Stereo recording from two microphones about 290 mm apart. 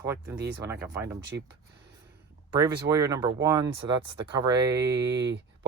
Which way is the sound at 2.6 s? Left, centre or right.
Centre.